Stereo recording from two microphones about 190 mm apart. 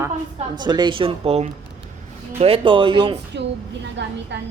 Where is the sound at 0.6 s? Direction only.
25° right (ahead or behind).